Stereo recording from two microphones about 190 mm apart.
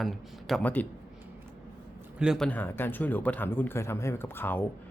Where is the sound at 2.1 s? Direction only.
5° right (ahead or behind).